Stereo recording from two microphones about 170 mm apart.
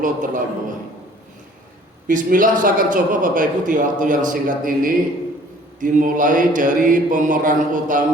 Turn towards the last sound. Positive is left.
turn(degrees=-50)  # may be behind; listen again after turning